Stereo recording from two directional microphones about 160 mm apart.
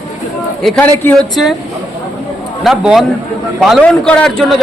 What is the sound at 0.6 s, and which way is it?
Speech, 10° left (ahead or behind).